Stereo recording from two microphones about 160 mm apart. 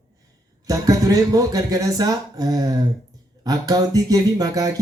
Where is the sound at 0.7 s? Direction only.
20° right (ahead or behind).